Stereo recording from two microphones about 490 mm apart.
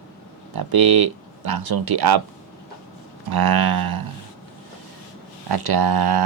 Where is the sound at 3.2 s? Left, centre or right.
Right.